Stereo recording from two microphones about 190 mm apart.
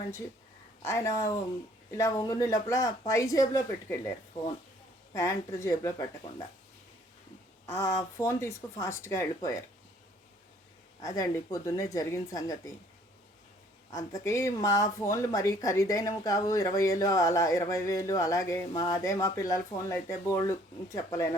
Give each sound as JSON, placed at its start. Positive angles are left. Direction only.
{"t": 0.8, "sound": "speech", "side_deg": 15}
{"t": 5.1, "sound": "speech", "side_deg": 15}
{"t": 7.7, "sound": "speech", "side_deg": 15}
{"t": 11.0, "sound": "speech", "side_deg": 20}
{"t": 13.9, "sound": "speech", "side_deg": 15}